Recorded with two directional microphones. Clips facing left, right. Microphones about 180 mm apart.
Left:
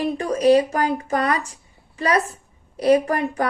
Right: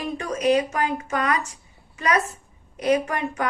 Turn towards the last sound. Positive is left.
turn(degrees=35)  # may be behind; listen again after turning